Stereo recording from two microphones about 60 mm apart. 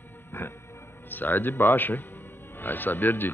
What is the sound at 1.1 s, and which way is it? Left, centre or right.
Speech, left.